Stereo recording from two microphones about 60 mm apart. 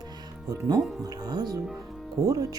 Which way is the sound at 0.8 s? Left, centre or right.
Centre.